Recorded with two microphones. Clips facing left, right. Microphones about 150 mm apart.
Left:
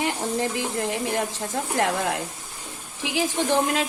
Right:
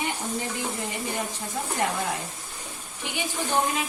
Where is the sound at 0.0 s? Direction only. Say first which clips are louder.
Left 5 dB; 80° left.